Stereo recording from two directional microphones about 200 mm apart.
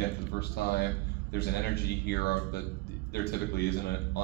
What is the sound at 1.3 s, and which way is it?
A man's voice, 55° left (ahead or behind).